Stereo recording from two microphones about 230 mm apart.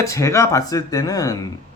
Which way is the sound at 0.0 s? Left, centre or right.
Centre.